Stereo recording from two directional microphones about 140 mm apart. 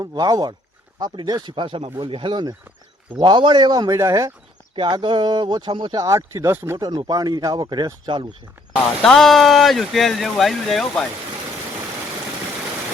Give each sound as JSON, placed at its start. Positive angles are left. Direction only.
{"t": 0.0, "sound": "speech", "side_deg": -30}
{"t": 4.7, "sound": "speech", "side_deg": -35}
{"t": 6.7, "sound": "speech", "side_deg": -30}
{"t": 8.7, "sound": "speech", "side_deg": 5}